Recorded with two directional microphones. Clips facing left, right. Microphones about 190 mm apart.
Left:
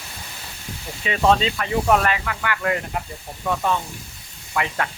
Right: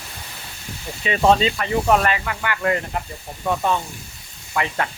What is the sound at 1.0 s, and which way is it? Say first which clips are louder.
Speech: right 2 dB; centre (ahead or behind).